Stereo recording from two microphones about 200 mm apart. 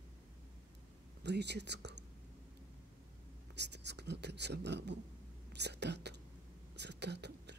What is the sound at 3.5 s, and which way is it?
Speech, 60° right (ahead or behind).